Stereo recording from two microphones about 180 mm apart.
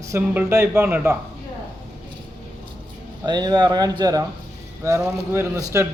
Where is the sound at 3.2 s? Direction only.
25° right (ahead or behind).